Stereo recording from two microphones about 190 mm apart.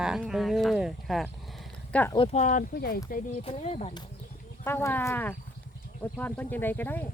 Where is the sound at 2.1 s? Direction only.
35° left (ahead or behind); by 3.0 s 50° left (ahead or behind).